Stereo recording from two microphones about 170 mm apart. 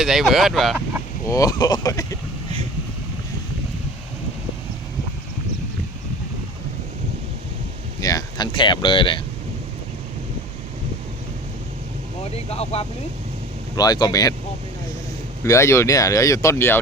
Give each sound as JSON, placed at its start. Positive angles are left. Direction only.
{"t": 0.0, "sound": "speech", "side_deg": 0}
{"t": 1.2, "sound": "speech", "side_deg": 20}
{"t": 8.0, "sound": "a sound", "side_deg": 25}
{"t": 12.5, "sound": "speech", "side_deg": 35}
{"t": 13.7, "sound": "speech", "side_deg": 25}
{"t": 15.4, "sound": "speech", "side_deg": 15}